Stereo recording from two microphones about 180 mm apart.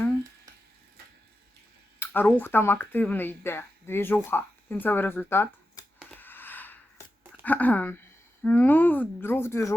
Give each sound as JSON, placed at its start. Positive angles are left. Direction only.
{"t": 2.0, "sound": "speech", "side_deg": 10}
{"t": 6.1, "sound": "gasp", "side_deg": 10}
{"t": 7.4, "sound": "speech", "side_deg": 10}